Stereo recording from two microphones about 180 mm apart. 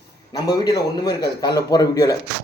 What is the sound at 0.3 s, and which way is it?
A man's voice, 20° left (ahead or behind).